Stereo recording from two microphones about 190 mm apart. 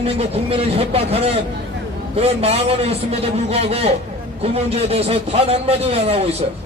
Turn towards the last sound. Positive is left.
turn(degrees=-30)  # may be behind; listen again after turning